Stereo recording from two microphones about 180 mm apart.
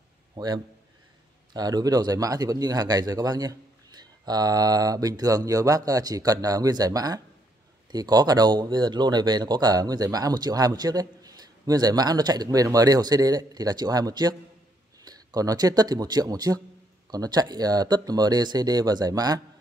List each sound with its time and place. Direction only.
1.5 s speech: 20° right (ahead or behind)